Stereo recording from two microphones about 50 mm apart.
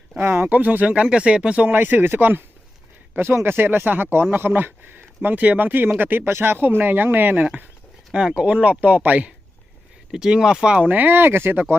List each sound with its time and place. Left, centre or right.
0.4 s speech: right
1.6 s speech: right
3.2 s speech: right
8.1 s speech: centre
10.1 s speech: centre
10.8 s speech: right